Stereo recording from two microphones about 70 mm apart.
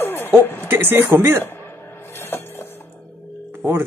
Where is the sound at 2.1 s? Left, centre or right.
Left.